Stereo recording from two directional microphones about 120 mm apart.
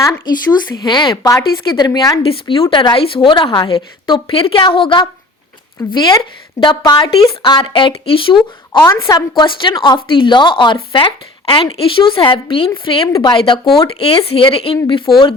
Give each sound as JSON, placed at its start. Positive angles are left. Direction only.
{"t": 0.0, "sound": "speech", "side_deg": 30}
{"t": 0.8, "sound": "speech", "side_deg": 40}
{"t": 2.2, "sound": "speech", "side_deg": 50}
{"t": 8.9, "sound": "speech", "side_deg": 30}
{"t": 9.3, "sound": "speech", "side_deg": 45}